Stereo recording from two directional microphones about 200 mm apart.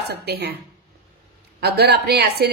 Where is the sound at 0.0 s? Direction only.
55° right (ahead or behind).